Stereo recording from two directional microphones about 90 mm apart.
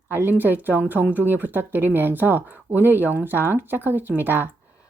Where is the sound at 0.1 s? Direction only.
20° right (ahead or behind).